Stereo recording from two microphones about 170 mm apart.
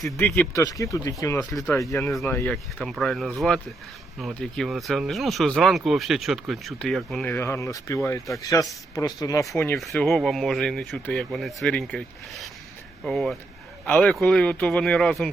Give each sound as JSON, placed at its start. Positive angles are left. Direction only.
{"t": 0.5, "sound": "speech", "side_deg": 20}
{"t": 2.0, "sound": "speech", "side_deg": 0}
{"t": 9.7, "sound": "speech", "side_deg": 0}